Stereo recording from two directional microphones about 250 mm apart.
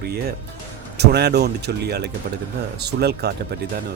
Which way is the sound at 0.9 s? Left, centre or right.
Right.